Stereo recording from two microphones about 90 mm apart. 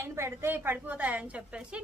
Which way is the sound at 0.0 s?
30° right (ahead or behind).